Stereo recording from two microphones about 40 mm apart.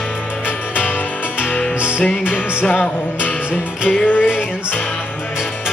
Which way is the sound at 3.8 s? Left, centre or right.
Left.